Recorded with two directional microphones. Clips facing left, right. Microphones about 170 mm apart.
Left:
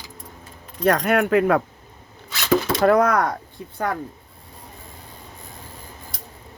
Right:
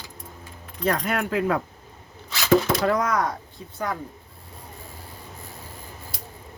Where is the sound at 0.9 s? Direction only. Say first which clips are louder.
Left 6 dB; 60° left (ahead or behind).